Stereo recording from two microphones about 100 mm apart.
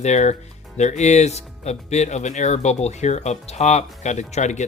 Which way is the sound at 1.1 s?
90° left.